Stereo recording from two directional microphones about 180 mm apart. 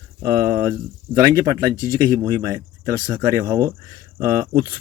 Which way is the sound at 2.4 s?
20° right (ahead or behind).